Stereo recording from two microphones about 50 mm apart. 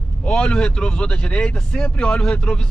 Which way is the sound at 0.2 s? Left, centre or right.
Left.